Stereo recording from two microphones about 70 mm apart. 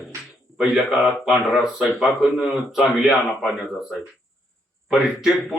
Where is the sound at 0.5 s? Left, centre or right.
Centre.